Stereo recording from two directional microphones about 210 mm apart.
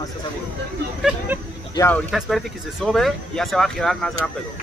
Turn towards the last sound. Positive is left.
turn(degrees=0)  # may be behind; listen again after turning